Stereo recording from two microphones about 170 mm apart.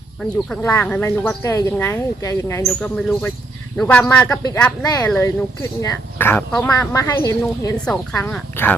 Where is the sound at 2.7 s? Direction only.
5° left (ahead or behind).